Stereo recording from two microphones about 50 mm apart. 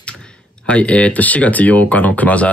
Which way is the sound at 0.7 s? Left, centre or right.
Left.